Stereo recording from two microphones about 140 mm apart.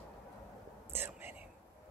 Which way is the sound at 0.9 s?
15° right (ahead or behind).